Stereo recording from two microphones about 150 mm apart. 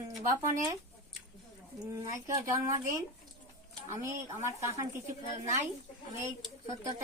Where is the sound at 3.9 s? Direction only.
20° right (ahead or behind).